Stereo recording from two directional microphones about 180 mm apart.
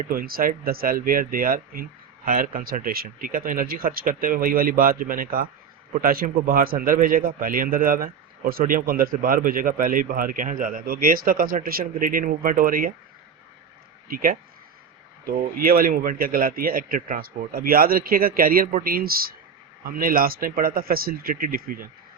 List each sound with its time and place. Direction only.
0.1 s speech: 55° right (ahead or behind)
14.1 s speech: 55° right (ahead or behind)